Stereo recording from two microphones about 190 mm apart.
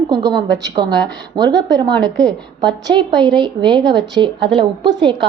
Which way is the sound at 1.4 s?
20° right (ahead or behind).